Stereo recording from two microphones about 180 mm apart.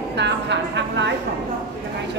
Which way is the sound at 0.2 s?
80° right.